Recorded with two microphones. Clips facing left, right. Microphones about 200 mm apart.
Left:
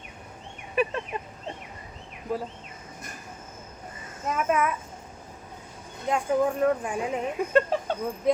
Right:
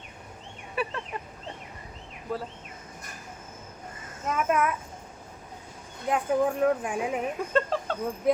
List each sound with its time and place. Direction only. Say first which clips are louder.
0.8 s fowl: left 5 dB; 20° left (ahead or behind)
2.3 s speech: left 2 dB; 15° left (ahead or behind)
4.3 s speech: even; centre (ahead or behind)
6.1 s speech: left 1 dB; 5° right (ahead or behind)
7.5 s speech: left 4 dB; 15° left (ahead or behind)